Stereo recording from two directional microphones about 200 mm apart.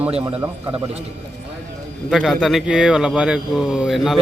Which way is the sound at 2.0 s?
Centre (ahead or behind).